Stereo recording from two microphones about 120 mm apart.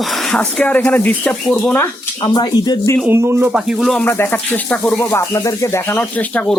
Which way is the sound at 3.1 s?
20° right (ahead or behind).